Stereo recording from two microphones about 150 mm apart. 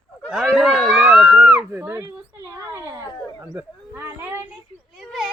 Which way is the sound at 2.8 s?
20° right (ahead or behind).